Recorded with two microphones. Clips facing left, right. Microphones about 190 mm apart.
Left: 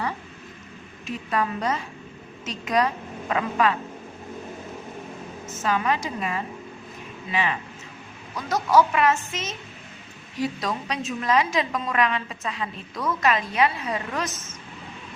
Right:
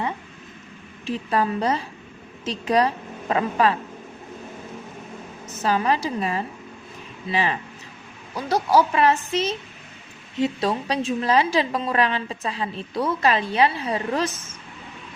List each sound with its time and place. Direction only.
1.0 s a woman's voice: 30° right (ahead or behind)
5.5 s a woman's voice: 35° right (ahead or behind)